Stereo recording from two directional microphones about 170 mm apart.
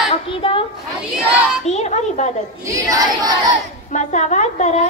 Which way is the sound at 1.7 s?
40° left (ahead or behind).